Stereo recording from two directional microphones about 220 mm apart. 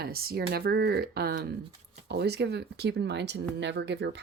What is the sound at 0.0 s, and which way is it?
Speech, 45° right (ahead or behind).